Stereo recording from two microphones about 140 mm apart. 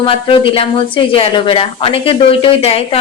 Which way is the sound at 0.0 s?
40° left (ahead or behind).